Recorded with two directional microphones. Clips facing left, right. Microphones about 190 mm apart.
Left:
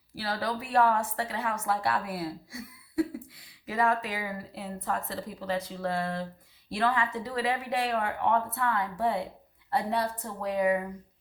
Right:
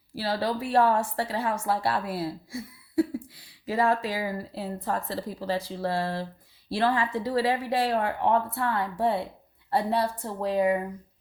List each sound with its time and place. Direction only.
0.1 s speech: 30° right (ahead or behind)